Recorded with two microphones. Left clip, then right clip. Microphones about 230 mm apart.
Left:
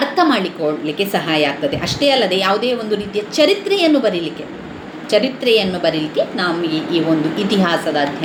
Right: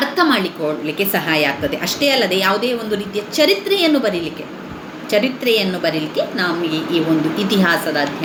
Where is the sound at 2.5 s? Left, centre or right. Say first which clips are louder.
Left 1 dB; right.